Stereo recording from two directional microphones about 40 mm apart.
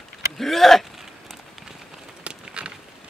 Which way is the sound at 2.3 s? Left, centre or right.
Right.